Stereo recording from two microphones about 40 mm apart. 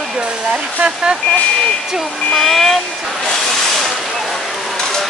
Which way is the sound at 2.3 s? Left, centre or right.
Centre.